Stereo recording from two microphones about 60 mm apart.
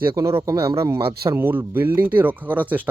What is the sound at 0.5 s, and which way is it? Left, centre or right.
Speech, right.